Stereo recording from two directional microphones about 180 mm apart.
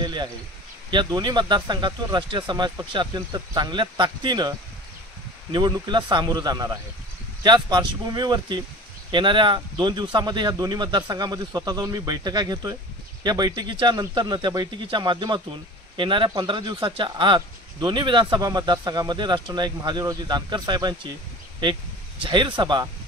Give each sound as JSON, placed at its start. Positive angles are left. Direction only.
{"t": 0.0, "sound": "a sound", "side_deg": -25}
{"t": 0.8, "sound": "speech", "side_deg": -25}
{"t": 22.2, "sound": "speech", "side_deg": -25}